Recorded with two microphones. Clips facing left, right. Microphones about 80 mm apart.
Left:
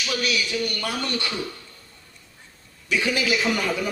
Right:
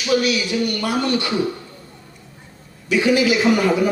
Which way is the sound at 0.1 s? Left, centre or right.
Right.